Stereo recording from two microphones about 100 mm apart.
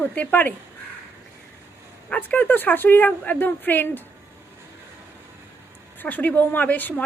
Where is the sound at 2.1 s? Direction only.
15° left (ahead or behind).